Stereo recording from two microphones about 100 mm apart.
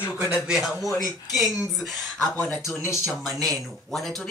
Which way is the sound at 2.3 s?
20° left (ahead or behind).